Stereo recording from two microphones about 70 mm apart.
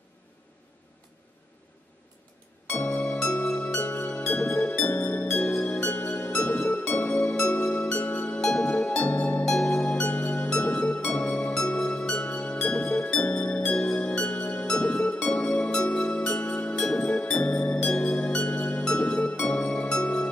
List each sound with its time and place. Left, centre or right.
2.8 s music: centre